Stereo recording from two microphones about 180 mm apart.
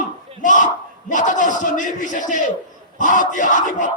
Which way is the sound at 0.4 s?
45° left (ahead or behind).